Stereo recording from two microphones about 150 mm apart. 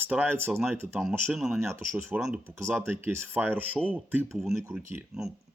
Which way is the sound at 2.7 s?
15° right (ahead or behind).